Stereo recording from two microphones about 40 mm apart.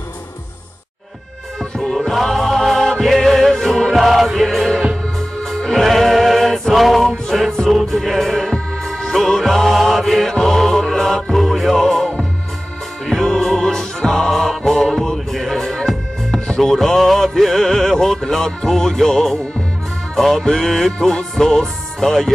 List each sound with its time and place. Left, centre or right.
1.6 s music: centre
20.3 s music: centre
20.6 s music: centre
21.4 s speech: centre